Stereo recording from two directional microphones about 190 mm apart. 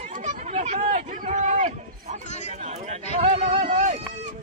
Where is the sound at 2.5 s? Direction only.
35° right (ahead or behind).